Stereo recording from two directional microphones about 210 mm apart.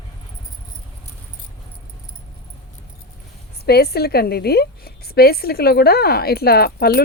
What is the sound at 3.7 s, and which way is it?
A woman's voice, 50° left (ahead or behind).